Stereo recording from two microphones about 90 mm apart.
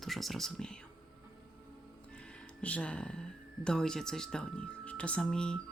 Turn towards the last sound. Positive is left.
turn(degrees=10)  # may be behind; listen again after turning